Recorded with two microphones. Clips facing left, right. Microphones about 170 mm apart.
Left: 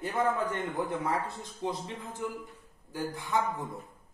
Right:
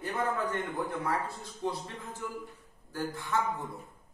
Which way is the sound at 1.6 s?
20° left (ahead or behind).